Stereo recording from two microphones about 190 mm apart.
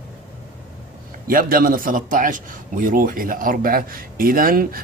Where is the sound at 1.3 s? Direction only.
50° right (ahead or behind).